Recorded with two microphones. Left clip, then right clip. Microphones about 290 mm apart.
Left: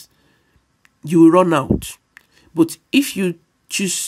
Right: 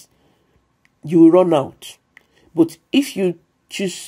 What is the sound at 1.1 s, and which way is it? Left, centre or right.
Speech, left.